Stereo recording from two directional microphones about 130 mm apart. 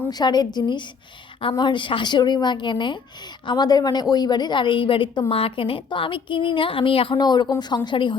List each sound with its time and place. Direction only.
0.1 s a woman's voice: 30° left (ahead or behind)